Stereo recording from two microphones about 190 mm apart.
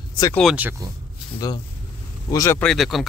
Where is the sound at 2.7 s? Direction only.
Centre (ahead or behind).